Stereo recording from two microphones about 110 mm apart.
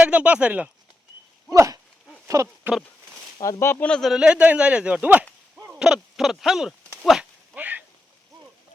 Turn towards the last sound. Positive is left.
turn(degrees=-15)  # may be behind; listen again after turning